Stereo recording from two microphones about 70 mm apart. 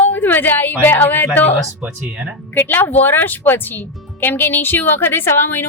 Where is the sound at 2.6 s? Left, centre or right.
Left.